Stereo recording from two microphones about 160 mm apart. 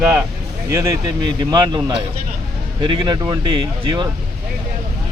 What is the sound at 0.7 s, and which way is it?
A man's voice, 20° right (ahead or behind).